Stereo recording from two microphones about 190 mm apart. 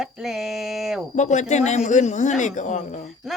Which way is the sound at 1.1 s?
40° left (ahead or behind).